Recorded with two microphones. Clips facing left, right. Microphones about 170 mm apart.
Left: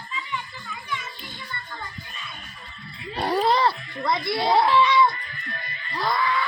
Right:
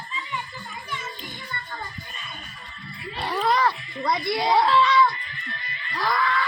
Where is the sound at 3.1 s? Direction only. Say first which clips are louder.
Left 2 dB; 40° left (ahead or behind).